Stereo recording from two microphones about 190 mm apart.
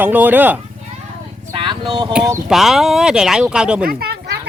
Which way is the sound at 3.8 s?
55° right (ahead or behind).